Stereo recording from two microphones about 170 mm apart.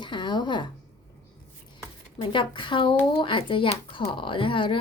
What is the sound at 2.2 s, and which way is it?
A woman's voice, 30° left (ahead or behind).